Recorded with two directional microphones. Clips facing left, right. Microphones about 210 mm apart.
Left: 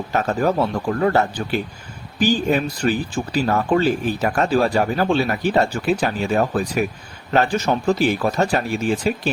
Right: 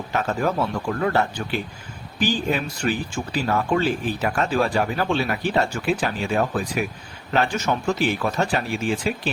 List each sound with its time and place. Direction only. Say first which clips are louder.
0.1 s speech: left 4 dB; 40° left (ahead or behind)